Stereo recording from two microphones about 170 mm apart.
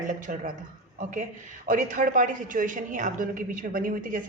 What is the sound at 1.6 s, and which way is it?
A man's voice, 50° right (ahead or behind).